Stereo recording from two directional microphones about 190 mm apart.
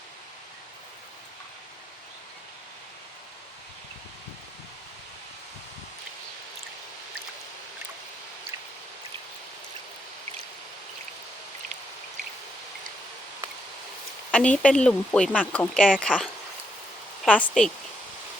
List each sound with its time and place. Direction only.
14.3 s speech: 5° left (ahead or behind)